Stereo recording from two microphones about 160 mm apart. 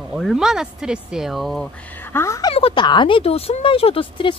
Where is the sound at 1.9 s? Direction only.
15° left (ahead or behind).